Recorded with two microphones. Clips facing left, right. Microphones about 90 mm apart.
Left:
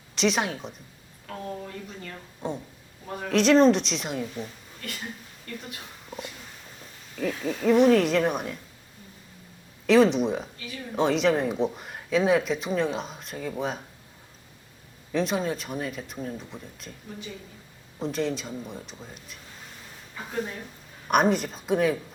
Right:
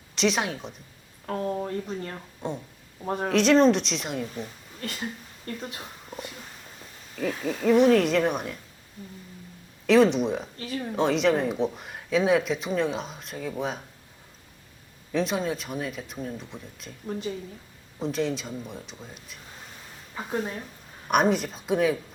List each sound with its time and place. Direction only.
0.2 s speech: centre (ahead or behind)
1.3 s speech: 35° right (ahead or behind)
2.4 s speech: centre (ahead or behind)
4.8 s speech: 35° right (ahead or behind)
6.1 s pig: centre (ahead or behind)
7.2 s speech: centre (ahead or behind)
9.8 s speech: centre (ahead or behind)
15.1 s speech: centre (ahead or behind)
17.1 s speech: 40° right (ahead or behind)
18.0 s speech: centre (ahead or behind)
20.1 s speech: 30° right (ahead or behind)
21.1 s speech: centre (ahead or behind)